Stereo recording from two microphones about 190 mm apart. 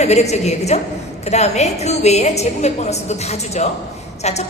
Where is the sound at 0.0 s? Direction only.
35° left (ahead or behind).